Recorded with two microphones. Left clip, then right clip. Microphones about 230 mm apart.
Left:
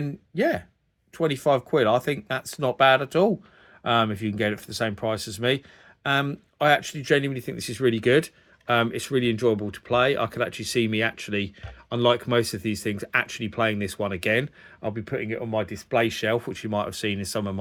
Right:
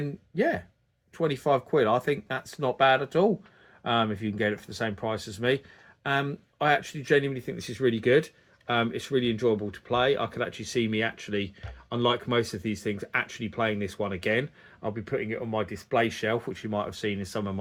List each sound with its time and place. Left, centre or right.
0.0 s speech: left